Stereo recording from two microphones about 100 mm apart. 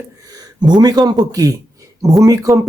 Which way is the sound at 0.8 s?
45° right (ahead or behind).